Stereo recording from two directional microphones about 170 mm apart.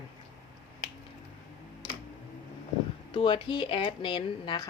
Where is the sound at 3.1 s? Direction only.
30° left (ahead or behind).